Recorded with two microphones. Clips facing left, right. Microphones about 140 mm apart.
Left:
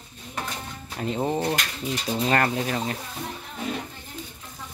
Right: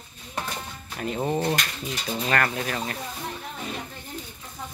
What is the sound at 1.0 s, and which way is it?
Speech, 25° left (ahead or behind).